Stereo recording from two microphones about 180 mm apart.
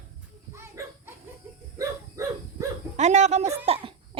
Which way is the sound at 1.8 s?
15° right (ahead or behind).